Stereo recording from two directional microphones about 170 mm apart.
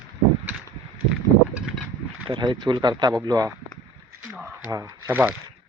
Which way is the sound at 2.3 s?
25° right (ahead or behind).